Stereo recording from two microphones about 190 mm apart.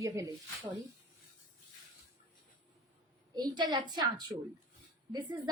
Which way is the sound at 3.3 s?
20° right (ahead or behind).